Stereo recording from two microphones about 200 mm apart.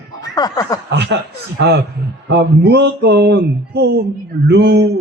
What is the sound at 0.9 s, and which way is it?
A man's voice, 60° right (ahead or behind).